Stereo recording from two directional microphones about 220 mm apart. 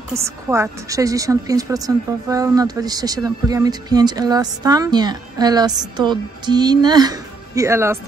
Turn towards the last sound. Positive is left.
turn(degrees=-10)  # may be behind; listen again after turning